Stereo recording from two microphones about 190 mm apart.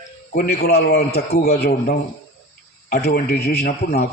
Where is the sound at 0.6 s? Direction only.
55° left (ahead or behind).